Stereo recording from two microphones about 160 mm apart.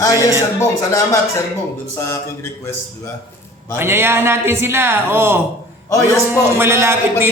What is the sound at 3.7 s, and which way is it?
Speech, 15° right (ahead or behind).